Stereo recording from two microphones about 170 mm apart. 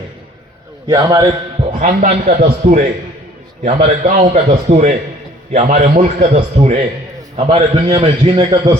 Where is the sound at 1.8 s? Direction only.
50° right (ahead or behind).